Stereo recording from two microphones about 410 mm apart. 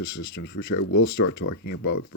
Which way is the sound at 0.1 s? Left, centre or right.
Left.